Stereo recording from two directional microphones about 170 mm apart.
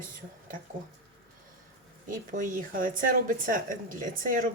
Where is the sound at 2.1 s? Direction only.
50° right (ahead or behind).